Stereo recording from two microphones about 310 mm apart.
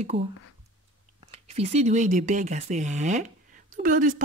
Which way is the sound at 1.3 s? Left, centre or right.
Centre.